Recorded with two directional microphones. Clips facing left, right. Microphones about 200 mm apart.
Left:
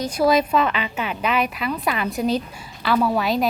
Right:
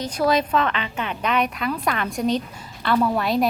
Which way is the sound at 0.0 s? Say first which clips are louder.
Left 2 dB; 10° left (ahead or behind).